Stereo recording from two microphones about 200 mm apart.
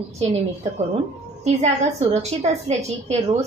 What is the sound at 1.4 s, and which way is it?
A woman's voice, 35° right (ahead or behind).